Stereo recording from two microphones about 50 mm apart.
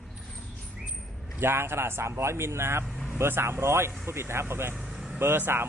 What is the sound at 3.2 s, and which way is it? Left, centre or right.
Speech, right.